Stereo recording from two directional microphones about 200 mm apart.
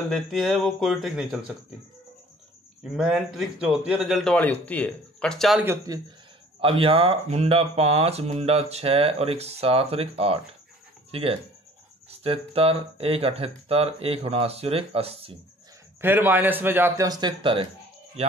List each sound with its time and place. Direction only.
0.1 s a man's voice: centre (ahead or behind)
2.8 s a man's voice: 5° right (ahead or behind)
5.6 s a man's voice: 10° right (ahead or behind)
6.6 s speech: 30° right (ahead or behind)
16.0 s a man's voice: 10° right (ahead or behind); by 17.6 s 25° right (ahead or behind)